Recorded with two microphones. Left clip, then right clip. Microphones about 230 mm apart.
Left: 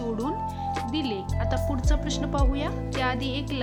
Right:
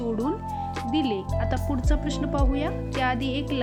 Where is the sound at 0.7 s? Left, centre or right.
Centre.